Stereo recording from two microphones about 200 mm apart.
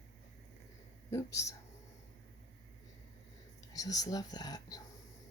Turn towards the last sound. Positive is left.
turn(degrees=20)  # may be behind; listen again after turning